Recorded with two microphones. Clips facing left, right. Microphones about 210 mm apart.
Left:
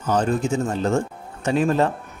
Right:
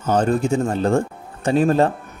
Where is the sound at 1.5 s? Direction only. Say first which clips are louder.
Right 3 dB; 40° right (ahead or behind).